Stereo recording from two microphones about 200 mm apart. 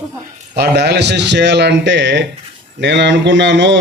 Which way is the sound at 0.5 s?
55° right (ahead or behind).